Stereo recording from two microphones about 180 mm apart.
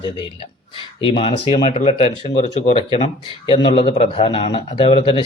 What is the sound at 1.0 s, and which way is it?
Speech, 30° left (ahead or behind).